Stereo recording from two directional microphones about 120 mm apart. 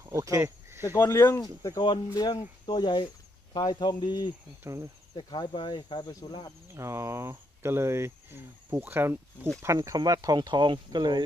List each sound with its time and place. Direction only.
0.0 s a sound: 25° right (ahead or behind)
0.9 s speech: 20° left (ahead or behind)
2.1 s cricket: 35° left (ahead or behind)
4.6 s speech: 25° right (ahead or behind)
5.1 s cricket: 40° left (ahead or behind)
6.7 s speech: 25° right (ahead or behind)